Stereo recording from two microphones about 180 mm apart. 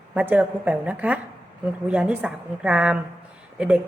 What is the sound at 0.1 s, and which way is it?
Speech, 10° right (ahead or behind).